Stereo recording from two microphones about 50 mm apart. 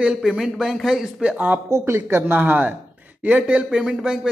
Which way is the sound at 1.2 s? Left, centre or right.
Right.